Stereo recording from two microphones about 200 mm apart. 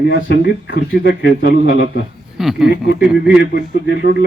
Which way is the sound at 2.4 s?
Centre (ahead or behind).